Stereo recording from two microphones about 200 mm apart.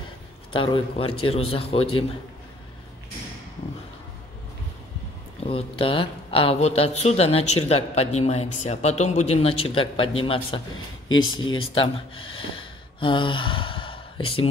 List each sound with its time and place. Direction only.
0.5 s a man's voice: 25° left (ahead or behind)
5.4 s a man's voice: 30° left (ahead or behind)
11.1 s speech: 80° left
11.7 s speech: 25° left (ahead or behind)